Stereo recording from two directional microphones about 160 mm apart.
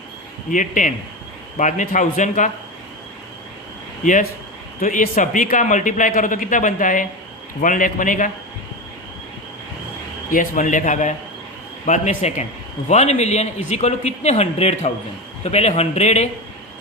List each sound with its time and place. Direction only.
0.5 s a man's voice: 55° left (ahead or behind)
4.0 s speech: 55° left (ahead or behind)
10.3 s a man's voice: 55° left (ahead or behind)